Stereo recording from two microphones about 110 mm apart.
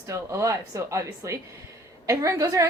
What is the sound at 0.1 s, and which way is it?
A woman's voice, 30° right (ahead or behind).